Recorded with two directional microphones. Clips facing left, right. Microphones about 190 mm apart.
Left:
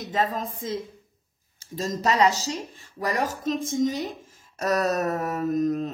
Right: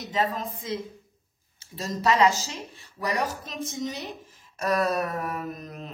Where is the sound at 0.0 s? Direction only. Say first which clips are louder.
Left 1 dB; 50° left (ahead or behind).